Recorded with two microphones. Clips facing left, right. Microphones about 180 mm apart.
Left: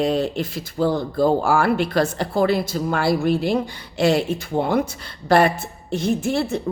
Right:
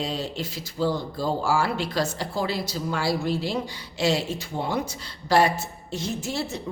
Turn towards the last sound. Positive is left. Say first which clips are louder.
# left 8 dB
turn(degrees=55)  # may be behind; listen again after turning